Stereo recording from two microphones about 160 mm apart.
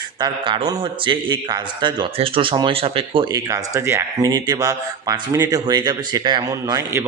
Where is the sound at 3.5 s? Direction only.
15° right (ahead or behind).